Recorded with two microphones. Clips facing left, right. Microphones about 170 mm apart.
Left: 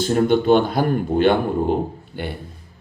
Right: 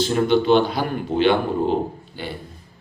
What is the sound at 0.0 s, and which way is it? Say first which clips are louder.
Speech: left 1 dB; 45° left (ahead or behind).